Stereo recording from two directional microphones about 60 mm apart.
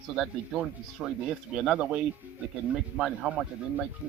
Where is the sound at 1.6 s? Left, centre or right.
Centre.